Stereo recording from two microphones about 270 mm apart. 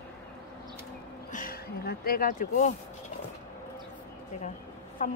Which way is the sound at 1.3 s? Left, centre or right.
Left.